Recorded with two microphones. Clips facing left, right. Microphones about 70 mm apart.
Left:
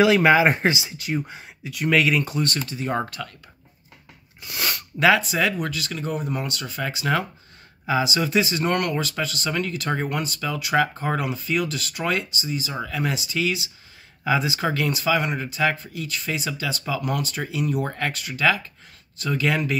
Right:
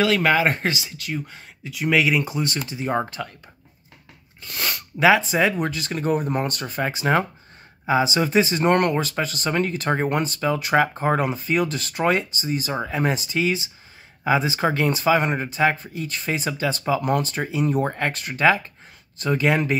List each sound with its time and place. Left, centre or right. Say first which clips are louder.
0.0 s speech: left 3 dB; centre
1.6 s speech: even; centre
4.4 s speech: even; centre
4.9 s speech: right 2 dB; centre
5.3 s speech: right 3 dB; right
5.9 s speech: right 7 dB; right
6.8 s speech: right 3 dB; right
17.8 s speech: right 3 dB; centre
18.1 s speech: right 3 dB; right